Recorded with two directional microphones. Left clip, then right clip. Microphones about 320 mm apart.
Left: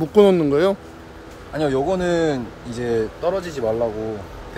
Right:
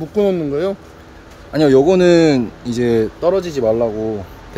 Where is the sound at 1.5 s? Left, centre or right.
Right.